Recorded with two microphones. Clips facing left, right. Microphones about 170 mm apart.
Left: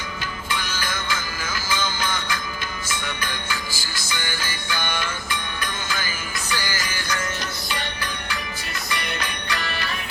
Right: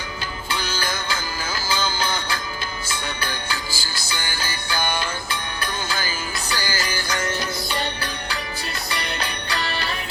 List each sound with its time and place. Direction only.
0.5 s music: 35° right (ahead or behind)
8.9 s music: 35° right (ahead or behind)